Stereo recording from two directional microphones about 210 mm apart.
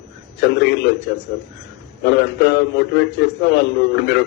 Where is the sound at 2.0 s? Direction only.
55° left (ahead or behind).